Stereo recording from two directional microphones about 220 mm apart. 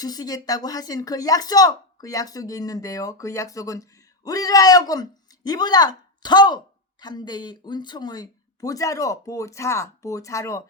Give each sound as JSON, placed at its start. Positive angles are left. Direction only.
{"t": 0.0, "sound": "speech", "side_deg": 15}